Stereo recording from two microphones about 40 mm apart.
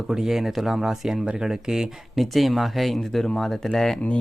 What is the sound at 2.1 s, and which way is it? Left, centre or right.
Speech, centre.